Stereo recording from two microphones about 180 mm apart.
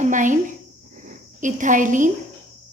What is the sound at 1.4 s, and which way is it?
Speech, 45° right (ahead or behind).